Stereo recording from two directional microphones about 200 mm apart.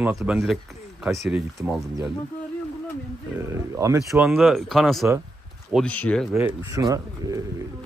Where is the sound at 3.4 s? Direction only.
15° right (ahead or behind).